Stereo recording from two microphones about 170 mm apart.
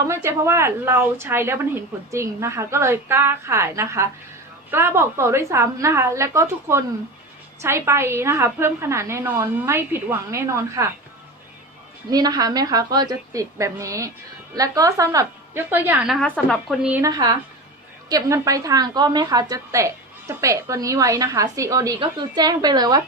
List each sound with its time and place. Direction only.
0.1 s a woman's voice: 15° right (ahead or behind)
12.1 s a woman's voice: 20° right (ahead or behind)
16.2 s speech: 5° left (ahead or behind)
16.9 s a woman's voice: 20° right (ahead or behind)